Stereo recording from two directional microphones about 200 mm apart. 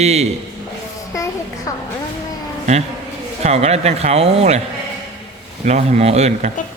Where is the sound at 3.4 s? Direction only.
30° right (ahead or behind).